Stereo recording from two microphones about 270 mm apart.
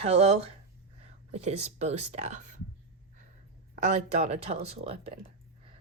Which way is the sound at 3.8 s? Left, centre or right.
Right.